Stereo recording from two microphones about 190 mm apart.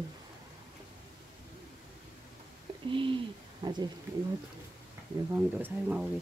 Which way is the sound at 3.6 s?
20° right (ahead or behind).